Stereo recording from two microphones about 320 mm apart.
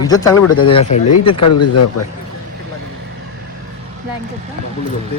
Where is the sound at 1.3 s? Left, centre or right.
Left.